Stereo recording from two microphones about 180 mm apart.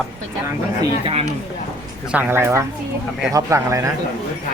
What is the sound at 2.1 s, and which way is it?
A woman's voice, 10° right (ahead or behind).